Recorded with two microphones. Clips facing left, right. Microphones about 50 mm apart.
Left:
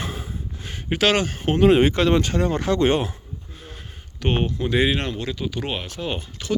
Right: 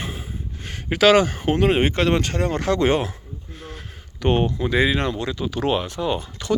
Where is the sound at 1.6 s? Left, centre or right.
Right.